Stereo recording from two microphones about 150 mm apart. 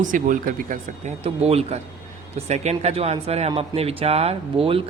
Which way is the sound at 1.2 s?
45° right (ahead or behind).